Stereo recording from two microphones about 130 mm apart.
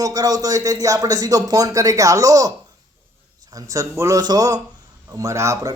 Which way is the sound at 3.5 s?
25° right (ahead or behind).